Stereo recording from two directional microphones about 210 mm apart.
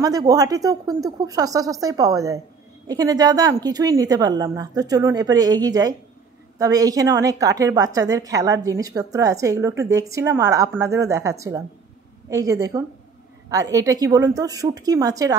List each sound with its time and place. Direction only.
0.0 s a woman's voice: 15° right (ahead or behind)